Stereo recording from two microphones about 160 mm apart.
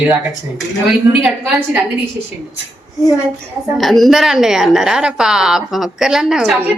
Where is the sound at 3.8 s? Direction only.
Centre (ahead or behind).